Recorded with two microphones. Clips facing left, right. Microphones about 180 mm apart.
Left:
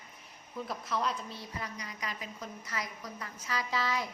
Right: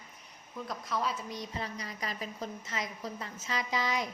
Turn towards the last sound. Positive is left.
turn(degrees=-20)  # may be behind; listen again after turning